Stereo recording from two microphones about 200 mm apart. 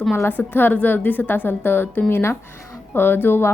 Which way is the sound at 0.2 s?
10° left (ahead or behind).